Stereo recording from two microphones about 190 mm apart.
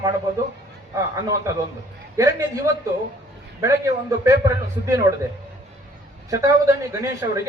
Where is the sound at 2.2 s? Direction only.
15° right (ahead or behind).